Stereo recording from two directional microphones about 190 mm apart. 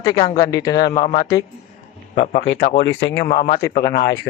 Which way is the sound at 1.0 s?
30° left (ahead or behind).